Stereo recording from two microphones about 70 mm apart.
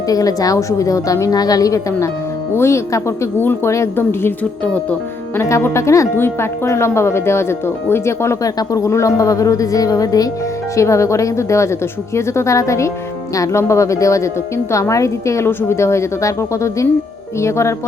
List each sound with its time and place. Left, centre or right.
0.1 s a woman's voice: left
2.6 s a woman's voice: left
3.4 s speech: left
5.4 s a woman's voice: left
6.1 s a woman's voice: left
10.8 s a woman's voice: left